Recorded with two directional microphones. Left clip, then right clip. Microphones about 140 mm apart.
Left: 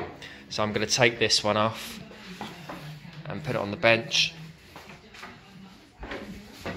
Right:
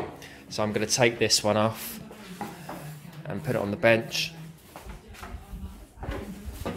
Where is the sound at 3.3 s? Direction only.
40° right (ahead or behind).